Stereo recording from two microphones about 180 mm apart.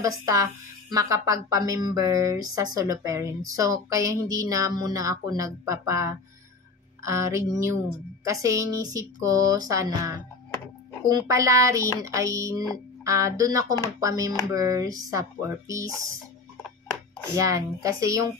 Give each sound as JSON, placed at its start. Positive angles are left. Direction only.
{"t": 0.0, "sound": "a woman's voice", "side_deg": -20}
{"t": 7.0, "sound": "music", "side_deg": -15}
{"t": 17.4, "sound": "a woman's voice", "side_deg": -20}